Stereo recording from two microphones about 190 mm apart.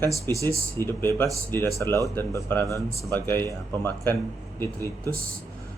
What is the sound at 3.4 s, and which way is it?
Speech, 20° right (ahead or behind).